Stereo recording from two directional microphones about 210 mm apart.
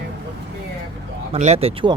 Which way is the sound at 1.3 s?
30° right (ahead or behind).